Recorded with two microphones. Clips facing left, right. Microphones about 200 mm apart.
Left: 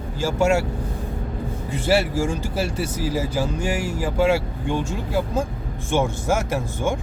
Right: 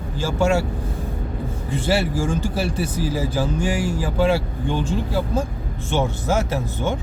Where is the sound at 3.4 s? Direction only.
10° left (ahead or behind).